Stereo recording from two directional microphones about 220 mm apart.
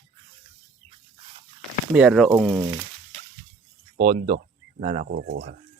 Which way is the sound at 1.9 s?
Centre (ahead or behind).